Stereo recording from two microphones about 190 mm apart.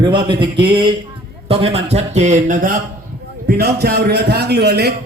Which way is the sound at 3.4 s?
55° right (ahead or behind).